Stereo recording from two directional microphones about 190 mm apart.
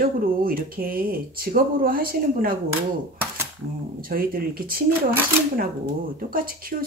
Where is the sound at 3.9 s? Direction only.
50° right (ahead or behind).